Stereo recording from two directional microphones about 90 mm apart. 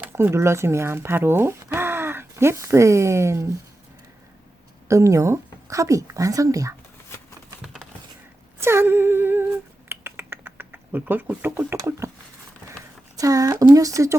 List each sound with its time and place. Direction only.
0.1 s speech: 30° right (ahead or behind)
4.9 s speech: 35° right (ahead or behind)
8.6 s finger snapping: 25° right (ahead or behind)
11.8 s speech: 30° right (ahead or behind)
13.1 s speech: 40° right (ahead or behind)